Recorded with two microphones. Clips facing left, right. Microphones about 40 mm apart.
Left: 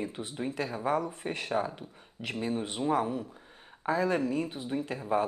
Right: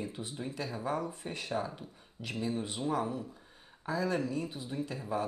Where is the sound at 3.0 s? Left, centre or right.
Centre.